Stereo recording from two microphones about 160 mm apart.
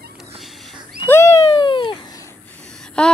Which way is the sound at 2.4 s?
5° left (ahead or behind).